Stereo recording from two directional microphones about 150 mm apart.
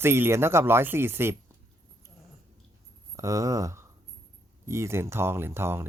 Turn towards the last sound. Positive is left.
turn(degrees=-15)  # may be behind; listen again after turning